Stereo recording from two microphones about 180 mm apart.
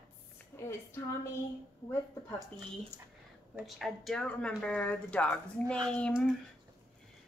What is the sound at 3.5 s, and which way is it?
Speech, centre (ahead or behind).